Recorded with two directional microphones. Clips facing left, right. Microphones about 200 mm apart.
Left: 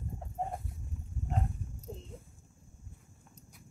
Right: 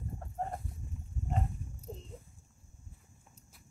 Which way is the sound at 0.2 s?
10° left (ahead or behind).